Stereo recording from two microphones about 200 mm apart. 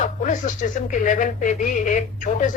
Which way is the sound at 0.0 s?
40° left (ahead or behind).